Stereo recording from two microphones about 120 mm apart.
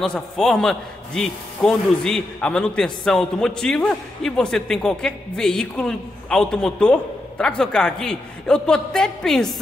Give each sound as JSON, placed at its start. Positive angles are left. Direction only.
{"t": 0.0, "sound": "a man's voice", "side_deg": 5}